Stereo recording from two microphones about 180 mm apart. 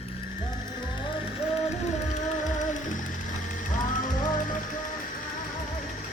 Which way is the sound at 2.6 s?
45° left (ahead or behind).